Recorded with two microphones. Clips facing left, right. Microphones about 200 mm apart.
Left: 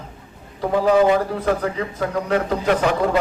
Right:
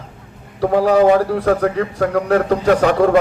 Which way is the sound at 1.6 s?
55° right (ahead or behind).